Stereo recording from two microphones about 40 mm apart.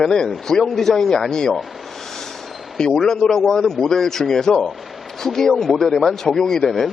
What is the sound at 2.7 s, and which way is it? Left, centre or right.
A man's voice, centre.